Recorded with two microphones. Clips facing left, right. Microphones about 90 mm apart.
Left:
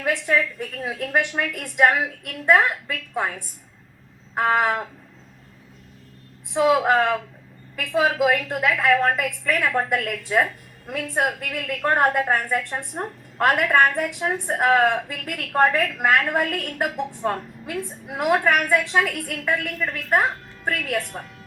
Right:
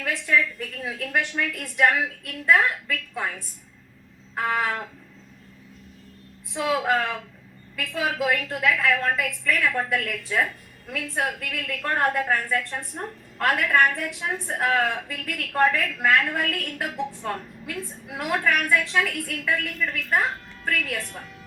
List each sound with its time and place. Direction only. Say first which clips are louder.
0.0 s a woman's voice: left 2 dB; 25° left (ahead or behind)
1.0 s a woman's voice: left 3 dB; 20° left (ahead or behind)
6.5 s a woman's voice: left 5 dB; 25° left (ahead or behind)